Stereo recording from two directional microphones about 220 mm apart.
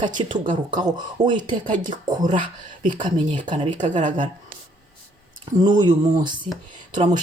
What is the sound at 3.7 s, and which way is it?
Speech, 35° right (ahead or behind).